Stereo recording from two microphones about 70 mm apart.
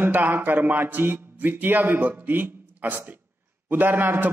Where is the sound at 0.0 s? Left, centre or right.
Right.